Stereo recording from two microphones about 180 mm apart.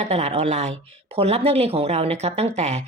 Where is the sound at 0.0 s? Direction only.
35° right (ahead or behind).